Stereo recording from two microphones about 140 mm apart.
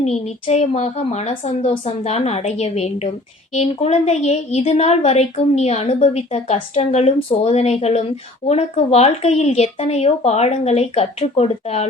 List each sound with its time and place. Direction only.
0.0 s speech: 50° left (ahead or behind)